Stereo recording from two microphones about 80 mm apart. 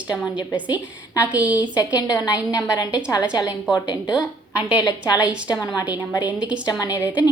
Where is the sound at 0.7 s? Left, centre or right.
Left.